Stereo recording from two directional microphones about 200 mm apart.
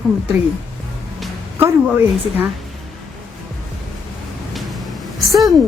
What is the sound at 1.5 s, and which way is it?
Speech, 10° right (ahead or behind).